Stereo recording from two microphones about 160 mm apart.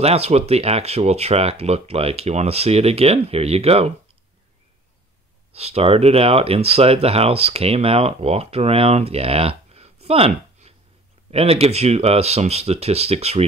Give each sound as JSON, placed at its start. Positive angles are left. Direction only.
{"t": 0.0, "sound": "speech", "side_deg": -40}
{"t": 5.5, "sound": "speech", "side_deg": -40}
{"t": 10.0, "sound": "a sound", "side_deg": -40}
{"t": 11.2, "sound": "speech", "side_deg": -40}